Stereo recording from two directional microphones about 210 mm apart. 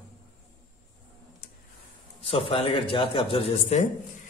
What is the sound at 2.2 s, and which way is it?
A man's voice, 25° left (ahead or behind).